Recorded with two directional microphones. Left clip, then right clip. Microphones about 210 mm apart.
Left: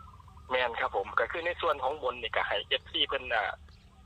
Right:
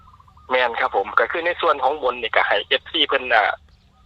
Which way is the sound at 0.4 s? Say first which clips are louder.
Right 10 dB; 25° right (ahead or behind).